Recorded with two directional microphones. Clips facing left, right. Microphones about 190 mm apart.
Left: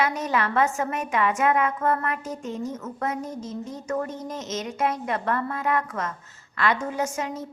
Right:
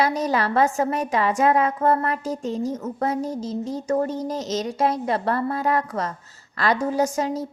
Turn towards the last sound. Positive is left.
turn(degrees=-35)  # may be behind; listen again after turning